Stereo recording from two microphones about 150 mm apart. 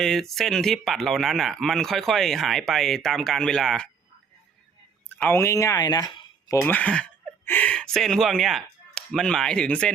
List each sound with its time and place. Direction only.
0.0 s speech: 5° left (ahead or behind)
5.0 s speech: 10° left (ahead or behind); by 6.6 s 30° left (ahead or behind)
6.6 s speech: 10° left (ahead or behind)